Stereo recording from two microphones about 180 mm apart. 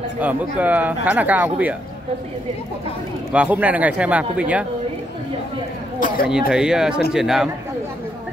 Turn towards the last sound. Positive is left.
turn(degrees=0)  # may be behind; listen again after turning